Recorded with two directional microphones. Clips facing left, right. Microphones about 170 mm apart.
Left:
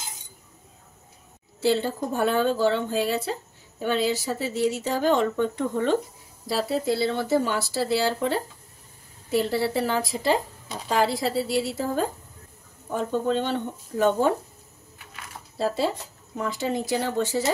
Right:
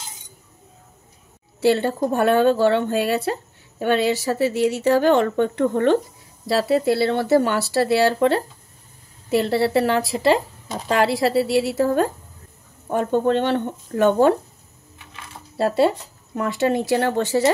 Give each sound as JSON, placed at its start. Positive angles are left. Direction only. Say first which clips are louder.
{"t": 1.6, "sound": "a woman's voice", "louder": "right 5 dB", "side_deg": -65}
{"t": 15.0, "sound": "a sound", "louder": "right 2 dB", "side_deg": -25}
{"t": 15.5, "sound": "a woman's voice", "louder": "right 7 dB", "side_deg": -65}